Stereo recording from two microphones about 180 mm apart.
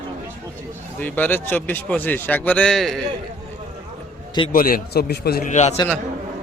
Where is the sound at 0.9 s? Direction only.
10° left (ahead or behind).